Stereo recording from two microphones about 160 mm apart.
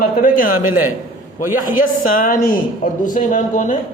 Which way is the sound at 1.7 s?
60° left (ahead or behind).